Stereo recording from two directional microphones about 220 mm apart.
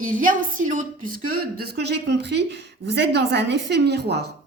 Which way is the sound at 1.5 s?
45° right (ahead or behind).